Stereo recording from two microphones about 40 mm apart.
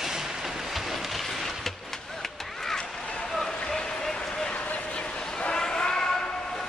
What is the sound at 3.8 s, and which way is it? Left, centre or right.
Run, centre.